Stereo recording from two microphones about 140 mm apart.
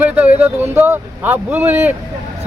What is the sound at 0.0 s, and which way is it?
Speech, 10° right (ahead or behind).